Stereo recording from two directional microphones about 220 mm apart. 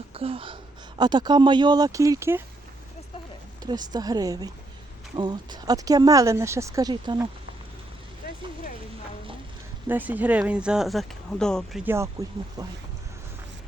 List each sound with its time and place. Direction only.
0.1 s speech: 25° right (ahead or behind)
3.6 s speech: 20° right (ahead or behind)
9.9 s speech: 5° right (ahead or behind)
12.2 s speech: 15° right (ahead or behind)